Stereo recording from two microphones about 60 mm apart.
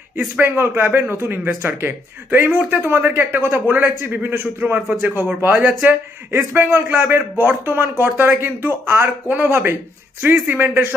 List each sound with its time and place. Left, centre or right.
0.4 s a man's voice: right
4.7 s a man's voice: right
9.3 s a man's voice: right